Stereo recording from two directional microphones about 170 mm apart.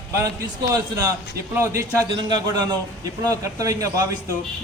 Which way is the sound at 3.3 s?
20° right (ahead or behind).